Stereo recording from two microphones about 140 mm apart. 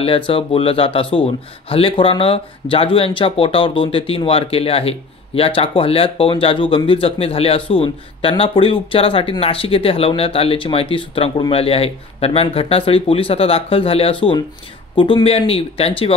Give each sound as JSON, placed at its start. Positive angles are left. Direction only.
{"t": 0.0, "sound": "speech", "side_deg": 40}